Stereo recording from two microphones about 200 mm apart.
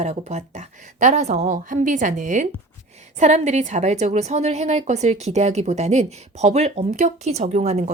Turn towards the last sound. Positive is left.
turn(degrees=-35)  # may be behind; listen again after turning